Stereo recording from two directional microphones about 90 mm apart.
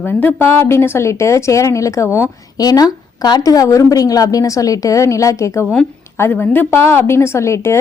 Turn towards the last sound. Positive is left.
turn(degrees=30)  # may be behind; listen again after turning